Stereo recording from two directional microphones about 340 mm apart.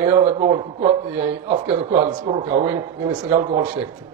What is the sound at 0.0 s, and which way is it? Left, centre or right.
A man's voice, centre.